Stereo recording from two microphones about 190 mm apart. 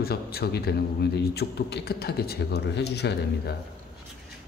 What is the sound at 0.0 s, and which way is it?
A man's voice, 55° left (ahead or behind).